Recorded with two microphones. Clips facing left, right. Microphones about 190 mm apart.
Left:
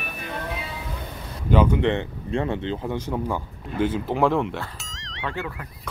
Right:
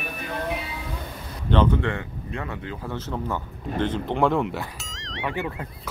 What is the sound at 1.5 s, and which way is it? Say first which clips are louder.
Speech: left 2 dB; 10° left (ahead or behind).